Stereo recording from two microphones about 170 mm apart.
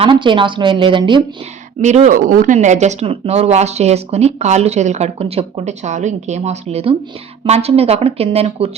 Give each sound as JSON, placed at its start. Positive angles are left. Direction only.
{"t": 0.0, "sound": "a woman's voice", "side_deg": -30}
{"t": 1.8, "sound": "speech", "side_deg": -45}